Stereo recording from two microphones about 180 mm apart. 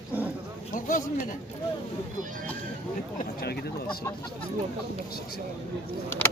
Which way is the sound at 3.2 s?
60° left (ahead or behind).